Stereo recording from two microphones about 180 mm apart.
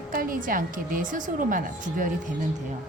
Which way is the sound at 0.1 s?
50° right (ahead or behind).